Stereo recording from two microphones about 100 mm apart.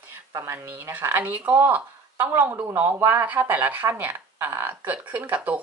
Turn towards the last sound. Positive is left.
turn(degrees=-15)  # may be behind; listen again after turning